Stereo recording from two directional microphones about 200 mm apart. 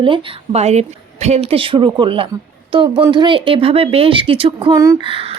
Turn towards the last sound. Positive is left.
turn(degrees=-25)  # may be behind; listen again after turning